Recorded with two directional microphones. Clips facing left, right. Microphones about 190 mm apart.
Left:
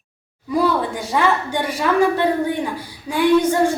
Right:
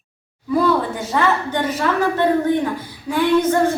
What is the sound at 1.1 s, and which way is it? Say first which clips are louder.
A woman's voice: even; 10° left (ahead or behind).